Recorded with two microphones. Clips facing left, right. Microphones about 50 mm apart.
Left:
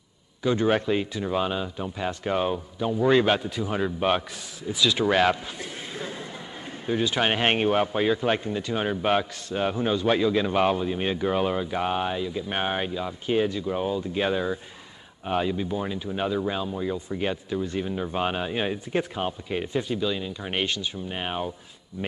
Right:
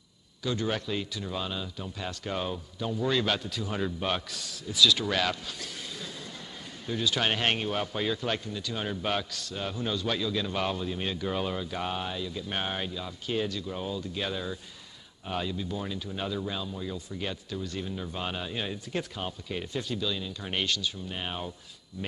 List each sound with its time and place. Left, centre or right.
0.4 s a man's voice: left